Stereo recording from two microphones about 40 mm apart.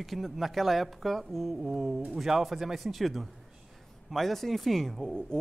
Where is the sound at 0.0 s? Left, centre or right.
Centre.